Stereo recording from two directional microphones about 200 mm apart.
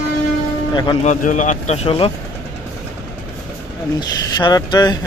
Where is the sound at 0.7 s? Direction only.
20° left (ahead or behind).